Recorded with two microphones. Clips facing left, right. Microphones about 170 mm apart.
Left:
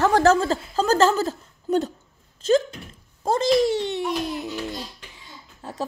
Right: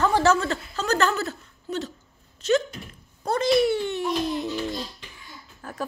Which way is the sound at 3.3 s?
90° left.